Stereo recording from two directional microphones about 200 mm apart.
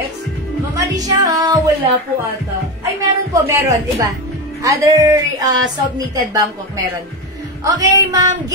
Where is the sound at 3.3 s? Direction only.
15° right (ahead or behind).